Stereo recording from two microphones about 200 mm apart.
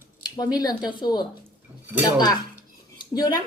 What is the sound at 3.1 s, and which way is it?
Speech, 20° left (ahead or behind).